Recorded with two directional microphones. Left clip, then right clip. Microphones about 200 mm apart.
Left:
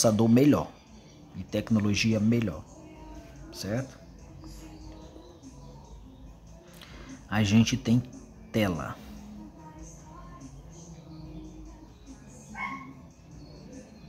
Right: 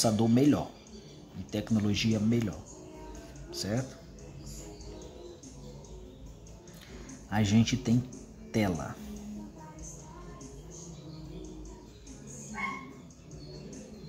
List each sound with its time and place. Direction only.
0.0 s speech: 15° left (ahead or behind)
7.2 s speech: 10° left (ahead or behind)